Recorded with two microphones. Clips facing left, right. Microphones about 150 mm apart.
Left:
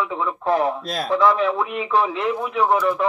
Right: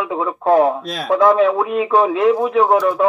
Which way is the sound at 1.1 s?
45° right (ahead or behind).